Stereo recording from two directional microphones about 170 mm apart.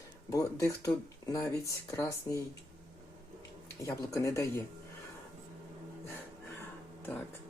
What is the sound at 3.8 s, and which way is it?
Speech, 15° left (ahead or behind).